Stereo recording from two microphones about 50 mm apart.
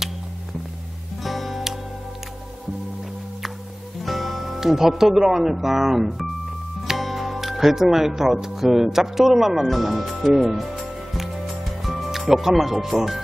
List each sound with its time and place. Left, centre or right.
1.2 s music: centre
4.0 s speech: centre
11.8 s speech: centre